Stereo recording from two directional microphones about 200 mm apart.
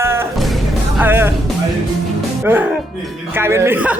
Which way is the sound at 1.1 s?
10° right (ahead or behind).